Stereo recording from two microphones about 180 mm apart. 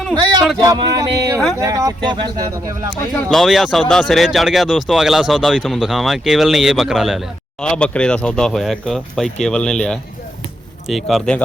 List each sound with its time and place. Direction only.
0.6 s speech: 20° right (ahead or behind)
2.9 s speech: centre (ahead or behind)